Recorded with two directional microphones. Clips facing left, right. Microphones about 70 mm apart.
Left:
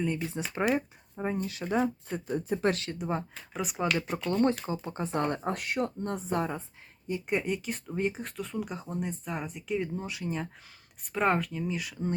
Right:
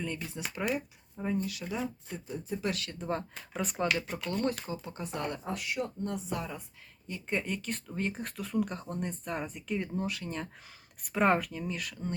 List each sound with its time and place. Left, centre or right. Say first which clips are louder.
0.0 s speech: left 6 dB; centre
0.7 s speech: left 5 dB; left
1.6 s speech: left 7 dB; left
3.0 s speech: left 2 dB; centre
4.3 s speech: left 6 dB; left
7.1 s speech: left 4 dB; centre
8.1 s speech: right 2 dB; centre